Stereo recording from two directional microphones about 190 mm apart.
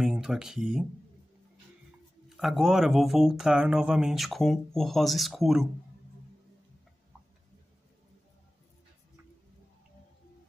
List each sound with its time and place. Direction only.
0.0 s speech: 5° right (ahead or behind)
2.2 s speech: centre (ahead or behind)